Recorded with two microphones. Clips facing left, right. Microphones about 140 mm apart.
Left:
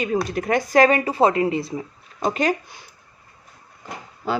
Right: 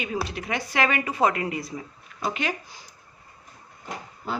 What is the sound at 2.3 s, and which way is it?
Speech, 40° left (ahead or behind).